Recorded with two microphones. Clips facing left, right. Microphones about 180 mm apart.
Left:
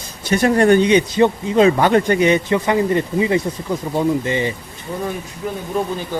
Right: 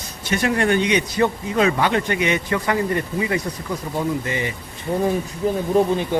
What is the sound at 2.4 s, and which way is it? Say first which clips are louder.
Speech: left 4 dB; 20° left (ahead or behind).